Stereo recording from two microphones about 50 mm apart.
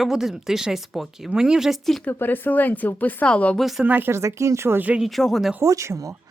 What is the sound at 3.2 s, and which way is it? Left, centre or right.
Speech, left.